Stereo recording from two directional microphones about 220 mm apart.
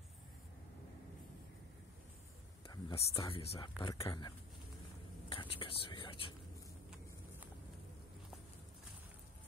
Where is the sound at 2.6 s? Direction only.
20° left (ahead or behind).